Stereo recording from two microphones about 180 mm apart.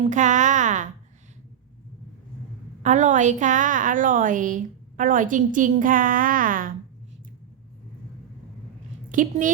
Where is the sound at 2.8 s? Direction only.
40° right (ahead or behind).